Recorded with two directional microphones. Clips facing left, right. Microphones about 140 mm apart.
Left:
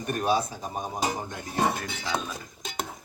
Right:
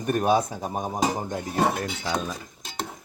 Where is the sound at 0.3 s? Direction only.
50° right (ahead or behind).